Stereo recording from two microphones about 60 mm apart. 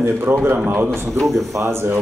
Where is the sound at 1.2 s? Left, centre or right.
Centre.